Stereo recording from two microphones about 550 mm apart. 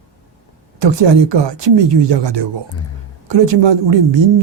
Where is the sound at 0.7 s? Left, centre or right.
Right.